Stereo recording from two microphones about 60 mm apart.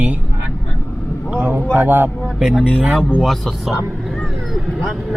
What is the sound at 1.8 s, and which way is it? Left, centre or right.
Speech, right.